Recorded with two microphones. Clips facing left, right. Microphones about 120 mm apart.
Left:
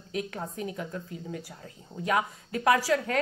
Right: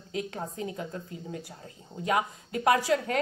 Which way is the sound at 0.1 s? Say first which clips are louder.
Even; 25° right (ahead or behind).